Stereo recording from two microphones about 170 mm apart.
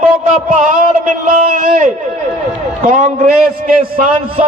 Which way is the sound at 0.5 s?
50° right (ahead or behind).